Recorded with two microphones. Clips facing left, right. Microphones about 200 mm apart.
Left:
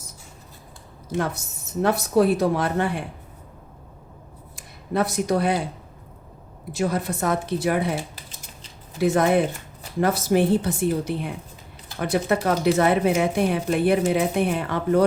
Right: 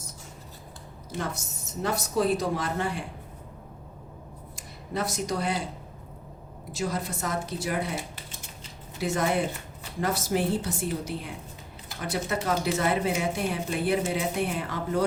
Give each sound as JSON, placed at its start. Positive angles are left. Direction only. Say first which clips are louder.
{"t": 1.8, "sound": "speech", "louder": "left 7 dB", "side_deg": 60}
{"t": 4.9, "sound": "speech", "louder": "left 7 dB", "side_deg": 60}
{"t": 6.7, "sound": "speech", "louder": "left 6 dB", "side_deg": 60}
{"t": 9.0, "sound": "speech", "louder": "left 7 dB", "side_deg": 60}